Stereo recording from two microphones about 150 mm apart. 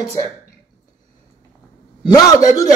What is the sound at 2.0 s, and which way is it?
Speech, 25° left (ahead or behind).